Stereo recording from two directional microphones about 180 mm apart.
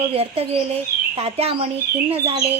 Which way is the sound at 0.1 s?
35° right (ahead or behind).